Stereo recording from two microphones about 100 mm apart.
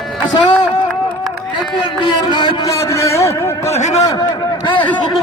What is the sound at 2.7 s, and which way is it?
A man's voice, 30° left (ahead or behind).